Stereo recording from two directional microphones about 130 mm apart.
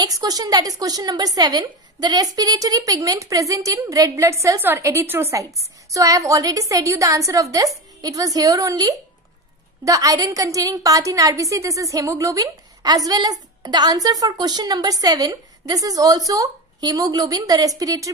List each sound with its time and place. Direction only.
0.0 s a woman's voice: 30° right (ahead or behind)